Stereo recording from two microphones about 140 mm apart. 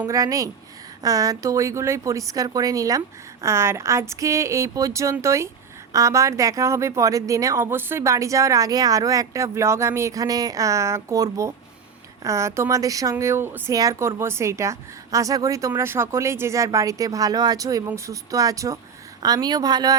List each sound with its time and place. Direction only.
0.1 s speech: 25° right (ahead or behind)